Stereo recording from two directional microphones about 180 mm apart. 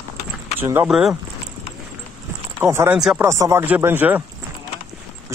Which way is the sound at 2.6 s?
15° right (ahead or behind).